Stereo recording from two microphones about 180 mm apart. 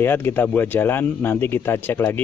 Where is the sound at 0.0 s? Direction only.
10° left (ahead or behind).